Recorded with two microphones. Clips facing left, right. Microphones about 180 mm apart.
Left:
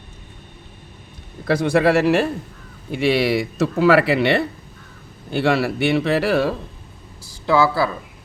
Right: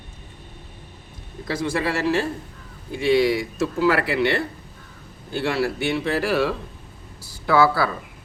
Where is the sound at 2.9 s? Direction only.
80° left.